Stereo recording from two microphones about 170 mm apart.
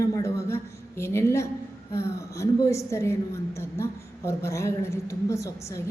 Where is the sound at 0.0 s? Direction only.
20° left (ahead or behind).